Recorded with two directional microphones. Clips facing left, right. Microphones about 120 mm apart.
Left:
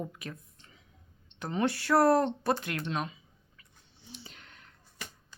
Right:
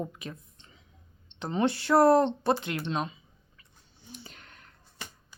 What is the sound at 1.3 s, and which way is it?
Speech, 25° right (ahead or behind).